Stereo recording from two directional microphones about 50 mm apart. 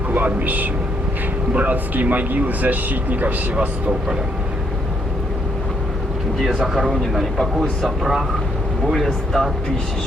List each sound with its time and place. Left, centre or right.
0.1 s speech: right
6.4 s speech: centre
9.0 s speech: centre